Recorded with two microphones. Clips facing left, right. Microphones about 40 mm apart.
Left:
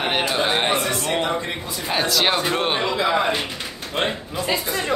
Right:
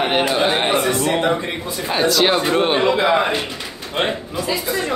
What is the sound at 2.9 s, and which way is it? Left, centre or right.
Speech, right.